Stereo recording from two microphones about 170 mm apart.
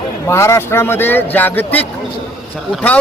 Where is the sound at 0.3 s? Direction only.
15° left (ahead or behind).